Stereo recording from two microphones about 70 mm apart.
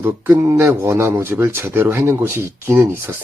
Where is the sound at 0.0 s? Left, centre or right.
Right.